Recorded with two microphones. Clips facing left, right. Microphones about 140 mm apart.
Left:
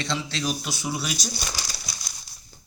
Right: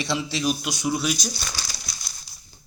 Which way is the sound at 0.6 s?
5° left (ahead or behind).